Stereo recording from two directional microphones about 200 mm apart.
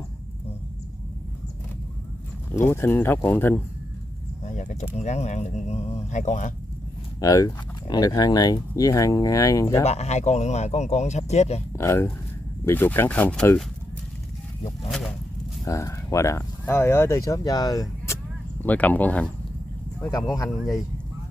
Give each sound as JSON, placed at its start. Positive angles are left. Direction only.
{"t": 2.7, "sound": "speech", "side_deg": 10}
{"t": 4.5, "sound": "speech", "side_deg": 35}
{"t": 7.2, "sound": "speech", "side_deg": 15}
{"t": 9.8, "sound": "speech", "side_deg": 35}
{"t": 11.8, "sound": "speech", "side_deg": 15}
{"t": 14.9, "sound": "a sound", "side_deg": 0}
{"t": 15.6, "sound": "speech", "side_deg": 15}
{"t": 18.6, "sound": "speech", "side_deg": 10}
{"t": 20.0, "sound": "speech", "side_deg": 20}
{"t": 20.4, "sound": "speech", "side_deg": 0}